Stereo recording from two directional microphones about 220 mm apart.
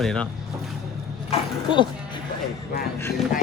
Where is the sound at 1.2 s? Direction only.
20° left (ahead or behind).